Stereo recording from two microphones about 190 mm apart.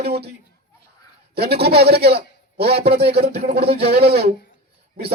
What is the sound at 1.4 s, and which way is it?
A man's voice, 55° right (ahead or behind).